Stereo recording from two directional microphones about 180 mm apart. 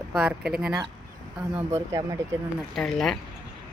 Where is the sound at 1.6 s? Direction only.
15° right (ahead or behind).